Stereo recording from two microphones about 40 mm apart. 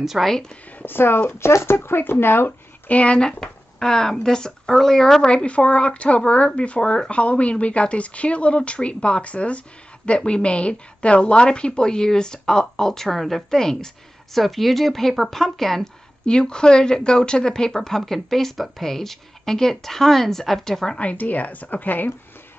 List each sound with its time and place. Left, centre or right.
0.0 s speech: centre
0.8 s speech: left
1.4 s speech: left
2.9 s speech: left
3.2 s speech: centre
5.3 s speech: left
14.3 s speech: centre
16.3 s speech: left
21.0 s a woman's voice: left